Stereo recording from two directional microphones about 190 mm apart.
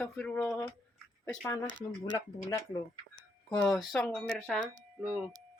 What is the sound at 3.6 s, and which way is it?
Speech, 5° left (ahead or behind).